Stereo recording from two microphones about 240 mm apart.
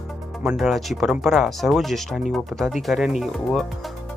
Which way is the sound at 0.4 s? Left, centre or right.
Centre.